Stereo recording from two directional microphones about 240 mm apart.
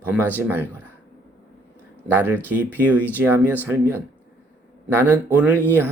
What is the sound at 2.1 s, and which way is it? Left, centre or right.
Speech, centre.